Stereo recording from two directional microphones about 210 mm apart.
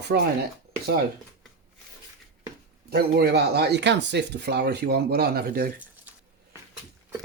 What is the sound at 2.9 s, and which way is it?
Speech, 45° right (ahead or behind).